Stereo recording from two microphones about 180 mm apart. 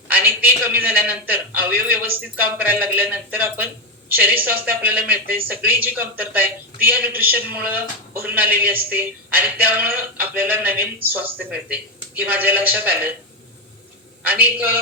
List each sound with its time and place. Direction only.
0.1 s speech: 10° right (ahead or behind)
14.3 s speech: 10° right (ahead or behind)